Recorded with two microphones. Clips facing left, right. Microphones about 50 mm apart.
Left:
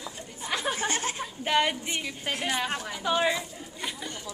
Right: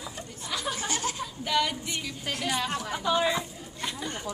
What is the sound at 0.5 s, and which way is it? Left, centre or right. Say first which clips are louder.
Chuckle: left 3 dB; left.